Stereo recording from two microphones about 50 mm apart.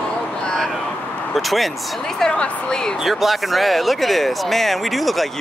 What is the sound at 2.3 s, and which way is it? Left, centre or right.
Speech, centre.